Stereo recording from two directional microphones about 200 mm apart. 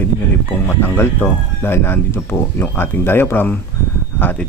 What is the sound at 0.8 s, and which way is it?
Speech, 10° left (ahead or behind).